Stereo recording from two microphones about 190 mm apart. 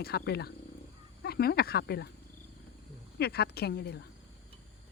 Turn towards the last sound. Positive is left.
turn(degrees=60)  # may be behind; listen again after turning